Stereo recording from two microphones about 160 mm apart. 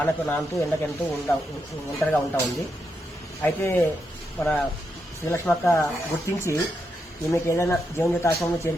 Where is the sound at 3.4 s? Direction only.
10° left (ahead or behind).